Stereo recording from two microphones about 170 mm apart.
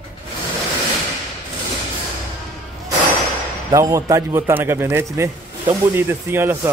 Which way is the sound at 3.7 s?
20° right (ahead or behind).